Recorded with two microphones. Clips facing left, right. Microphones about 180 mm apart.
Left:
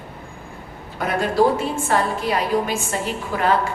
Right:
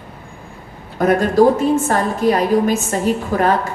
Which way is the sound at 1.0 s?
45° right (ahead or behind).